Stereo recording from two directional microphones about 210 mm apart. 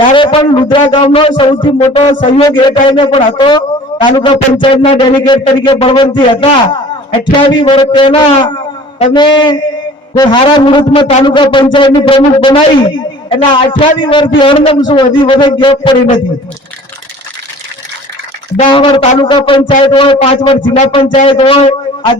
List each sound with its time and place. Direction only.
0.1 s speech: 25° left (ahead or behind)
18.5 s a man's voice: 25° left (ahead or behind)